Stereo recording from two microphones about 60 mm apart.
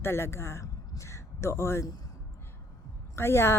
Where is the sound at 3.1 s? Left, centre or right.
Left.